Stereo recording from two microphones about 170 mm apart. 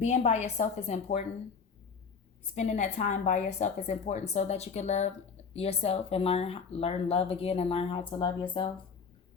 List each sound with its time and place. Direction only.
0.0 s a woman's voice: 45° left (ahead or behind)
2.6 s speech: 45° left (ahead or behind)